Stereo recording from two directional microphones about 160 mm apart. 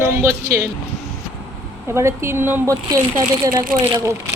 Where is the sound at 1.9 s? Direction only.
15° right (ahead or behind).